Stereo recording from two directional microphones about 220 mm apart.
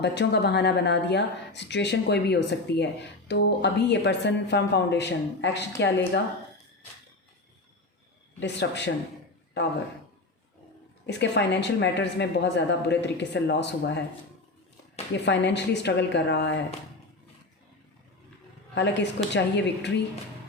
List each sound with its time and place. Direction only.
0.0 s speech: 50° left (ahead or behind)
8.4 s speech: 50° left (ahead or behind)
11.0 s speech: 50° left (ahead or behind)
15.1 s speech: 50° left (ahead or behind)
18.7 s speech: 50° left (ahead or behind)